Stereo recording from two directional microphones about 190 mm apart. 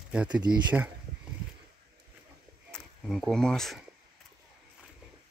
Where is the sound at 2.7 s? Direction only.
Centre (ahead or behind).